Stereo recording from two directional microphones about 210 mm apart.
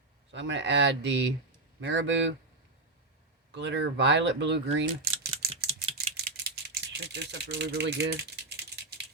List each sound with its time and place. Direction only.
0.3 s speech: 60° right (ahead or behind)
3.5 s speech: 55° right (ahead or behind)
5.6 s typing: 30° right (ahead or behind)
6.3 s rattle: 50° right (ahead or behind)